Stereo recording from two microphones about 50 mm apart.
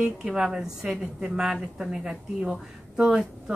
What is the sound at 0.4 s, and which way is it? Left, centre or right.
A woman's voice, centre.